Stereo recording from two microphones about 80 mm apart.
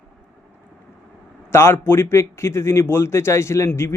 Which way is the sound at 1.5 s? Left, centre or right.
Left.